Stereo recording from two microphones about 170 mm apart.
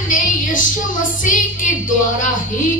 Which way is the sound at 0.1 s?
50° left (ahead or behind).